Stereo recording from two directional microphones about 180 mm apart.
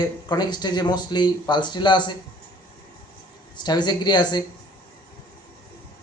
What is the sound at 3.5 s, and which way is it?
Speech, 25° left (ahead or behind).